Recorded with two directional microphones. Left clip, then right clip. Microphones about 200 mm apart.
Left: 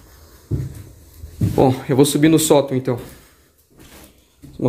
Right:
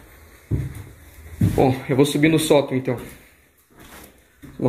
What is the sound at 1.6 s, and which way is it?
Speech, 20° left (ahead or behind).